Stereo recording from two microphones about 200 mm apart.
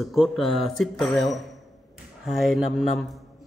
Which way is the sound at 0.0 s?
Centre (ahead or behind).